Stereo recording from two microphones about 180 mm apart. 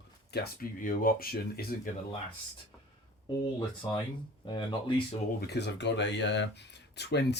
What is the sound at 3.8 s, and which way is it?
Speech, 25° left (ahead or behind).